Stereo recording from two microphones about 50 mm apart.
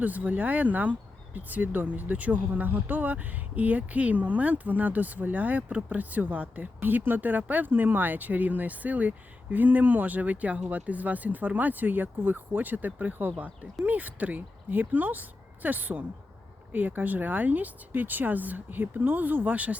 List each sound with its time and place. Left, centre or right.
0.0 s speech: right